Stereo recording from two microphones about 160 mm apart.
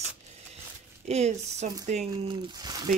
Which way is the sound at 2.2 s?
25° right (ahead or behind).